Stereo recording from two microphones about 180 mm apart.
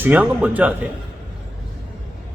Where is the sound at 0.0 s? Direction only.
10° right (ahead or behind).